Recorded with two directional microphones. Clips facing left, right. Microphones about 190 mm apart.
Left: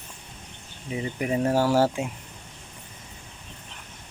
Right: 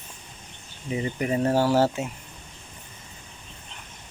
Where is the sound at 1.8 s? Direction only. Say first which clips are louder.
Even; 10° left (ahead or behind).